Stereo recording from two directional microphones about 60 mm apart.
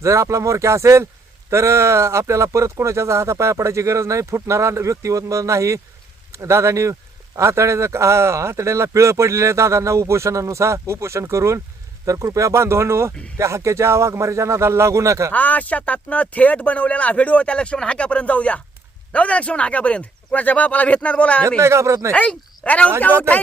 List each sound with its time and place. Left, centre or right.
0.0 s speech: right
15.3 s speech: left
21.6 s speech: right
22.1 s speech: left